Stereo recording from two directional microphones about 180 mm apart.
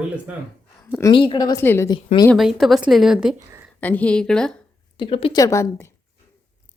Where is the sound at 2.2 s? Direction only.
Centre (ahead or behind).